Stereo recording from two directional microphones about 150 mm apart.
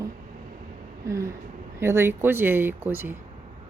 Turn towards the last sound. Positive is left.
turn(degrees=-15)  # may be behind; listen again after turning